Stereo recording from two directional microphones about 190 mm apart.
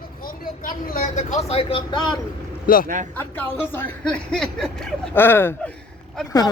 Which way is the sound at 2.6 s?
50° left (ahead or behind).